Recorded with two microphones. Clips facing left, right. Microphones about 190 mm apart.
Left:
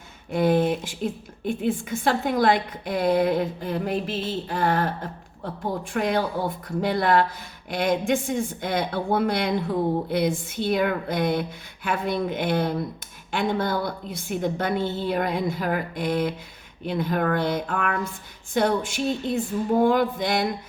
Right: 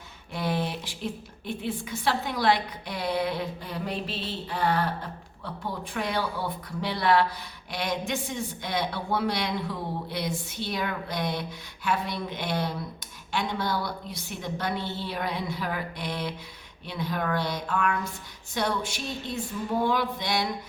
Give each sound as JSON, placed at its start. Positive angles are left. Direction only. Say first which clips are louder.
{"t": 0.3, "sound": "a woman's voice", "louder": "left 9 dB", "side_deg": 50}